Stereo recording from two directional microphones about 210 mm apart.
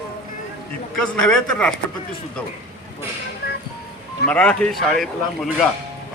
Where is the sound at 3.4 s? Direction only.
45° left (ahead or behind).